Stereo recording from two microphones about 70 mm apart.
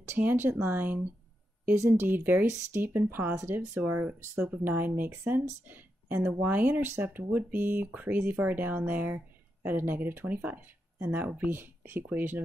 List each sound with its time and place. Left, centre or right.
0.2 s speech: right
1.8 s speech: right
2.0 s speech: right